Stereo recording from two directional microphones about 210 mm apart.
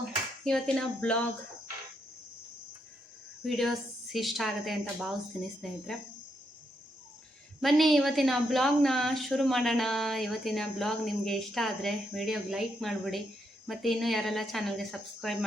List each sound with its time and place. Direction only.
0.4 s a woman's voice: centre (ahead or behind)
3.4 s a woman's voice: centre (ahead or behind)
7.6 s a woman's voice: centre (ahead or behind)